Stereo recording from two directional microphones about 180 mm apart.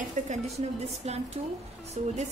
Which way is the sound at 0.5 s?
35° right (ahead or behind).